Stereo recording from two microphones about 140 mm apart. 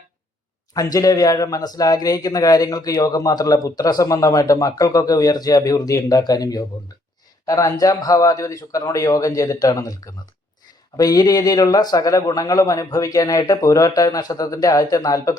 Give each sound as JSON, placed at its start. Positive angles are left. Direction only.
{"t": 0.7, "sound": "speech", "side_deg": 25}